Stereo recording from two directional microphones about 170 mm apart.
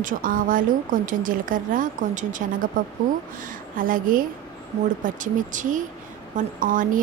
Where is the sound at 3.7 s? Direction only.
55° right (ahead or behind).